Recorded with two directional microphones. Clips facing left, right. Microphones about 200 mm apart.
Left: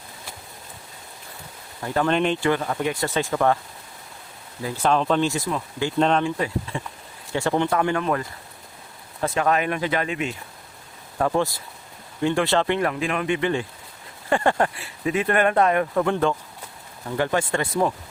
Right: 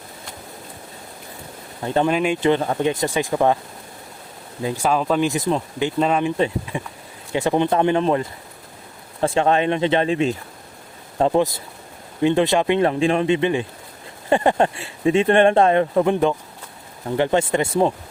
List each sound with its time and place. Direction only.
1.8 s speech: 25° right (ahead or behind)
2.0 s speech: 10° right (ahead or behind)
2.4 s speech: 25° right (ahead or behind)
4.6 s speech: 10° right (ahead or behind)
5.3 s speech: 25° right (ahead or behind)
6.0 s speech: 5° right (ahead or behind)
6.2 s speech: 20° right (ahead or behind)
12.9 s speech: 30° right (ahead or behind)